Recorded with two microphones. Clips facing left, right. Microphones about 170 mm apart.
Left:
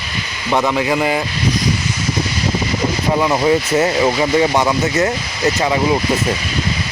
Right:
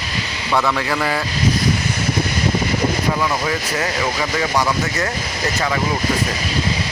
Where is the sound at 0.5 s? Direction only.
20° left (ahead or behind).